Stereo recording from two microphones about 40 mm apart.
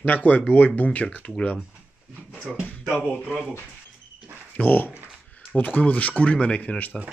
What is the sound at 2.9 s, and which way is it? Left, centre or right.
Speech, left.